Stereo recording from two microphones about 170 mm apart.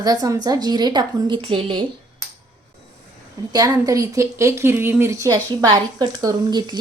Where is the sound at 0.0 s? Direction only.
20° right (ahead or behind).